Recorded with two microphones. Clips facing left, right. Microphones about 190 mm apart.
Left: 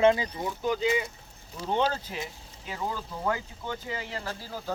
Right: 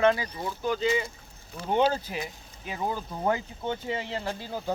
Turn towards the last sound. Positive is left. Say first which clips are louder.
# right 4 dB
turn(degrees=-25)  # may be behind; listen again after turning